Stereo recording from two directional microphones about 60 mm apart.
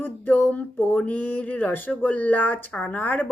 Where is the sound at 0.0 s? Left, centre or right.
Left.